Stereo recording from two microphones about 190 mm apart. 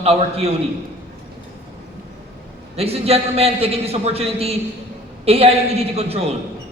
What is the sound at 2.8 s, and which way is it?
Speech, 30° right (ahead or behind).